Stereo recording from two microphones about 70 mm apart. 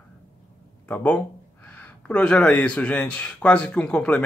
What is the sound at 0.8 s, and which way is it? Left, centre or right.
Speech, left.